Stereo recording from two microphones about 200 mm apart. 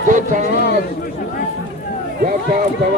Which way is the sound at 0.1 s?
40° right (ahead or behind).